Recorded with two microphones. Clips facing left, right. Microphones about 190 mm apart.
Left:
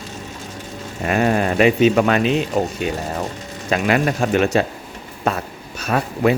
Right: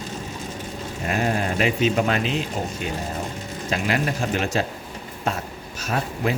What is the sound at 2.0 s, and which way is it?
Speech, 90° left.